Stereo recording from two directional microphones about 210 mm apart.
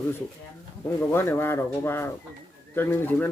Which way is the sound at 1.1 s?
10° left (ahead or behind).